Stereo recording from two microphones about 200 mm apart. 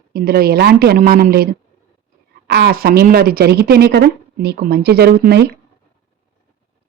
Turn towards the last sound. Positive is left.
turn(degrees=-55)  # may be behind; listen again after turning